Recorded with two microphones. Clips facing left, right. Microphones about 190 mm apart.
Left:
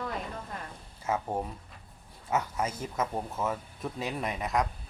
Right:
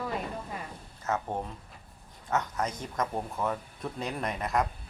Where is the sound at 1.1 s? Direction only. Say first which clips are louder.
Left 1 dB; 10° left (ahead or behind).